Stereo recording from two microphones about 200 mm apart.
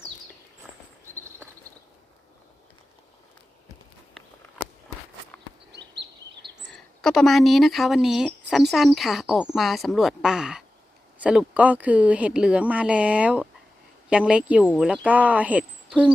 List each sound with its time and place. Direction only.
5.7 s bird: 60° right (ahead or behind)
6.7 s a woman's voice: centre (ahead or behind)